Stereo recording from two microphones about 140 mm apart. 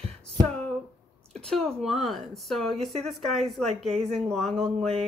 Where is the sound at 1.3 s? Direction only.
5° left (ahead or behind).